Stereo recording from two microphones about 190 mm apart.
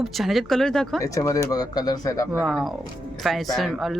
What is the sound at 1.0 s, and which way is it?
Speech, 15° left (ahead or behind).